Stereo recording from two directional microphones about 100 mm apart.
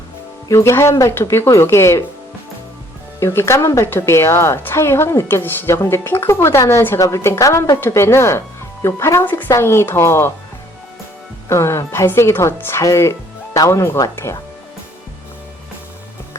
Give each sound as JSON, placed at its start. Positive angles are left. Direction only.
{"t": 0.4, "sound": "a woman's voice", "side_deg": 30}
{"t": 3.2, "sound": "a woman's voice", "side_deg": 25}
{"t": 11.4, "sound": "a woman's voice", "side_deg": 30}